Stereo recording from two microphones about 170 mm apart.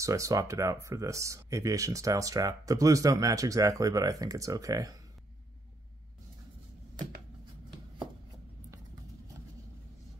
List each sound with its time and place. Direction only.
0.0 s speech: 20° right (ahead or behind)